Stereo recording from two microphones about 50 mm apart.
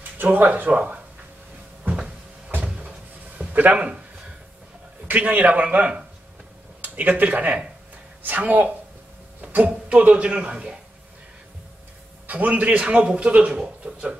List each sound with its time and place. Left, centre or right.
0.2 s a man's voice: right
3.5 s a man's voice: right
5.0 s a man's voice: right
12.3 s a man's voice: right